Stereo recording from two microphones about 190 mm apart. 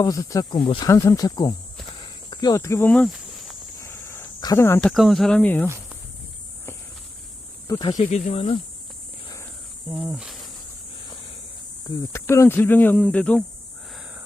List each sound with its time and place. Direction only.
0.0 s speech: 15° left (ahead or behind)
0.6 s speech: 25° left (ahead or behind)
0.9 s speech: 15° left (ahead or behind)
5.6 s a sound: 15° right (ahead or behind)
7.7 s speech: 25° left (ahead or behind)
7.9 s speech: 35° left (ahead or behind)
9.9 s cricket: centre (ahead or behind)
12.1 s speech: 15° left (ahead or behind)